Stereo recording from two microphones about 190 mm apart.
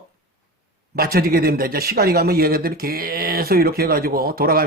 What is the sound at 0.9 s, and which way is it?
Speech, 50° right (ahead or behind).